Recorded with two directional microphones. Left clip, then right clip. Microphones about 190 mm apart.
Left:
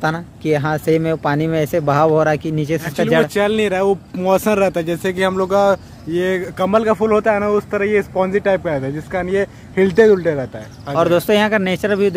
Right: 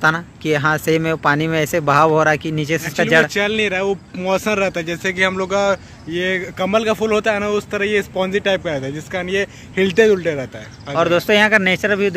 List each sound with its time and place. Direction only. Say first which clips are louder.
0.0 s speech: right 3 dB; 5° left (ahead or behind)
3.3 s speech: left 2 dB; 30° left (ahead or behind)
6.9 s speech: left 2 dB; 5° left (ahead or behind)
8.1 s speech: left 2 dB; 15° left (ahead or behind)